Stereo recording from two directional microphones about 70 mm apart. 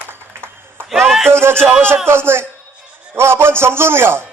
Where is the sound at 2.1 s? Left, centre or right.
Right.